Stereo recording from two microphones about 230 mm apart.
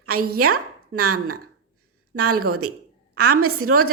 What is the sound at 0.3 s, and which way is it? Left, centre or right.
A woman's voice, right.